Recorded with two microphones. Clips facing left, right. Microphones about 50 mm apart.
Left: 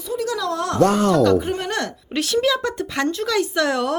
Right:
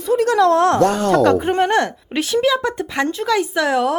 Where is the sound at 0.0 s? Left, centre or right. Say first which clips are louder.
Right 9 dB; right.